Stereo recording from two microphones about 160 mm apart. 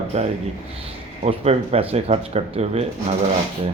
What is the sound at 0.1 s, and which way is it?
Speech, 40° right (ahead or behind).